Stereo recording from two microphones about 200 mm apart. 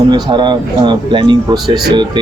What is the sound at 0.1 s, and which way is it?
Speech, 20° right (ahead or behind).